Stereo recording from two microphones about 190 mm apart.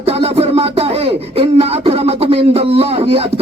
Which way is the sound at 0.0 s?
30° right (ahead or behind).